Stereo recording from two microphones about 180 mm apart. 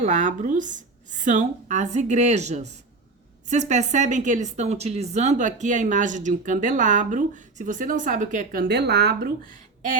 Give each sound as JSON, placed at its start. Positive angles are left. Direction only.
{"t": 0.0, "sound": "a woman's voice", "side_deg": -45}